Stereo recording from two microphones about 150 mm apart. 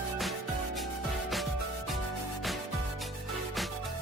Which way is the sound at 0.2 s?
Centre (ahead or behind).